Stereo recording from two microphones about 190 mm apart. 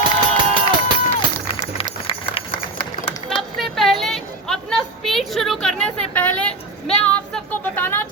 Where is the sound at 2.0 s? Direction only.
30° left (ahead or behind).